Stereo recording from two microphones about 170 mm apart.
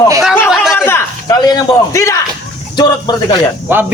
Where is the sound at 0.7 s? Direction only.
10° left (ahead or behind).